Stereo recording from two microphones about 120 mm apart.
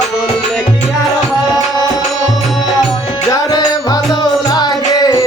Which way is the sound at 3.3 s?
30° left (ahead or behind).